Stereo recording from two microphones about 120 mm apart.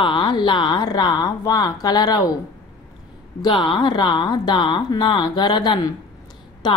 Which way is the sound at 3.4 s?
40° left (ahead or behind).